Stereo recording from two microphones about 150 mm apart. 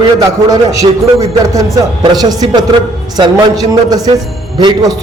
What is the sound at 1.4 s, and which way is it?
A man's voice, 25° right (ahead or behind).